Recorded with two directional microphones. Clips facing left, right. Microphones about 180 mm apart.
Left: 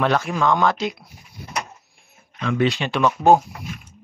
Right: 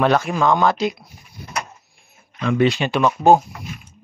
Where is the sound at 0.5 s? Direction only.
10° right (ahead or behind).